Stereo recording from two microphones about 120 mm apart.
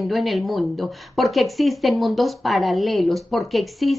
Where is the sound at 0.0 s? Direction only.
Centre (ahead or behind).